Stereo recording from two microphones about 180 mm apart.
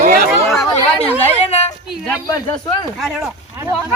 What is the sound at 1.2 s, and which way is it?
Speech, 35° left (ahead or behind).